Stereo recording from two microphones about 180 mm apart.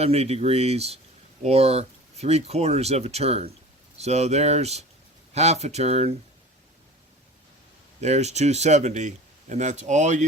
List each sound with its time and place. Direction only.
0.0 s speech: 35° right (ahead or behind)
8.0 s speech: 40° right (ahead or behind)